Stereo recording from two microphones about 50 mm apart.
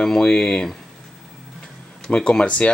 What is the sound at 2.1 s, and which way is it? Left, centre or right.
Speech, centre.